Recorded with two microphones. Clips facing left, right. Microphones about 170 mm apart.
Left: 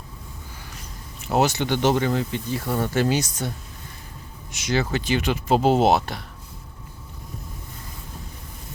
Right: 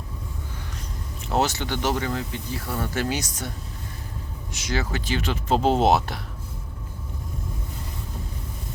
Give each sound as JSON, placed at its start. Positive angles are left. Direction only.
{"t": 1.3, "sound": "speech", "side_deg": 15}
{"t": 4.5, "sound": "speech", "side_deg": 20}